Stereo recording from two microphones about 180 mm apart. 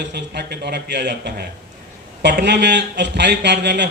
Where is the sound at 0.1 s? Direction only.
70° right (ahead or behind).